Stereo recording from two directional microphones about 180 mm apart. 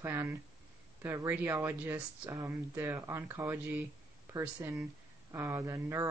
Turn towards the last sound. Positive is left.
turn(degrees=-20)  # may be behind; listen again after turning